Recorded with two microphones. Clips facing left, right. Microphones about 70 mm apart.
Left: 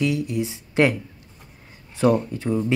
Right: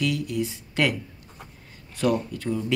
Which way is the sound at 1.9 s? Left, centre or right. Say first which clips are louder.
Left 5 dB; left.